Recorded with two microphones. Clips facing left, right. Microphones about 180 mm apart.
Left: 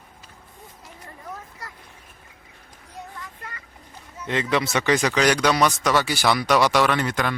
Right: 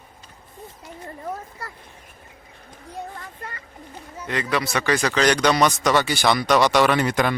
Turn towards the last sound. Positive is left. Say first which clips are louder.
# right 3 dB
turn(degrees=-10)  # may be behind; listen again after turning